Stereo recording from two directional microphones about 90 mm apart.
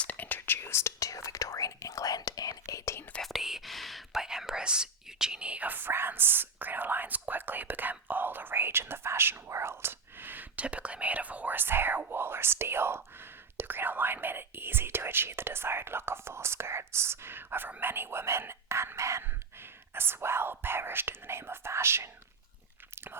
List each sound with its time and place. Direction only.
0.0 s whispering: 20° left (ahead or behind); by 3.0 s 35° left (ahead or behind)
3.2 s whispering: centre (ahead or behind); by 22.1 s 30° right (ahead or behind)